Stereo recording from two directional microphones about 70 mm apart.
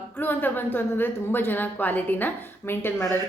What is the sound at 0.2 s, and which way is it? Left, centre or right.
A woman's voice, left.